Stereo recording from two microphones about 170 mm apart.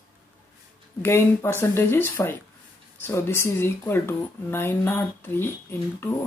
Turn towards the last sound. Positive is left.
turn(degrees=15)  # may be behind; listen again after turning